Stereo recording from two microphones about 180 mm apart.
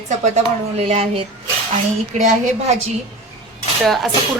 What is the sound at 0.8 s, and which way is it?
Speech, 35° right (ahead or behind).